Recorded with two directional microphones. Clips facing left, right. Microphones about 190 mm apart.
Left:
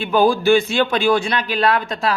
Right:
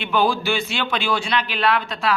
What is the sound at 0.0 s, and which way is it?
A man's voice, 40° left (ahead or behind).